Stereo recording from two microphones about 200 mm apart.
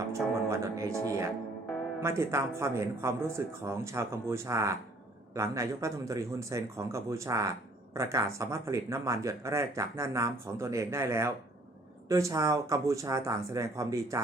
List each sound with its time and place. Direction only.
0.1 s music: 15° right (ahead or behind)
2.0 s speech: 15° right (ahead or behind)